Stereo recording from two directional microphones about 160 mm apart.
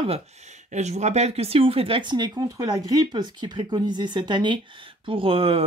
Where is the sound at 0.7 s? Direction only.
45° right (ahead or behind).